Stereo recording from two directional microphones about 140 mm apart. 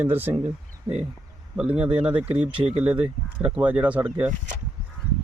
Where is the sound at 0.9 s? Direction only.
25° right (ahead or behind).